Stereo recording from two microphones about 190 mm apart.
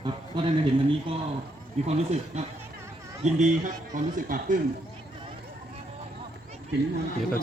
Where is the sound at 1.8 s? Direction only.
35° right (ahead or behind).